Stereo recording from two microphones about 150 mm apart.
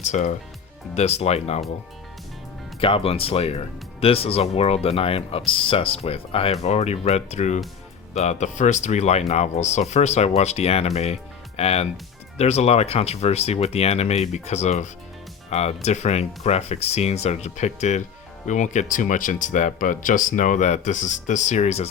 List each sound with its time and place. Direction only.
0.0 s speech: 50° left (ahead or behind)
2.8 s speech: 40° left (ahead or behind)